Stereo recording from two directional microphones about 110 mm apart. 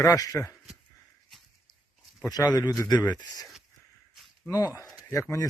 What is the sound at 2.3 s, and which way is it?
Speech, 35° left (ahead or behind).